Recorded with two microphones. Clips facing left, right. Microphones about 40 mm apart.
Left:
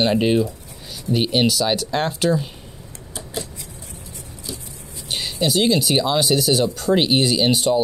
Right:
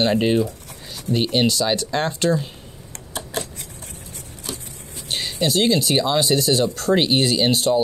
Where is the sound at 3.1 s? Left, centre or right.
Right.